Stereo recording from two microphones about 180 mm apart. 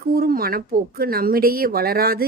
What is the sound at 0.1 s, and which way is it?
Speech, 55° right (ahead or behind).